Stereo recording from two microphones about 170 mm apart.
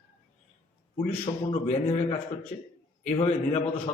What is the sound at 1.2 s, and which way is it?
A man's voice, 35° left (ahead or behind).